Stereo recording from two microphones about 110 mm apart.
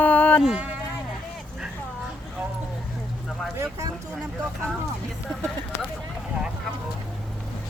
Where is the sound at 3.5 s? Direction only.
25° right (ahead or behind).